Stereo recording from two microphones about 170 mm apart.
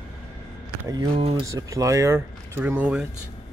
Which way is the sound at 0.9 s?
20° right (ahead or behind).